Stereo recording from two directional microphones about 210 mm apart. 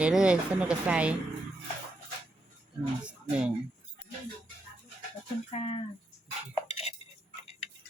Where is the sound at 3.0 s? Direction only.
5° right (ahead or behind).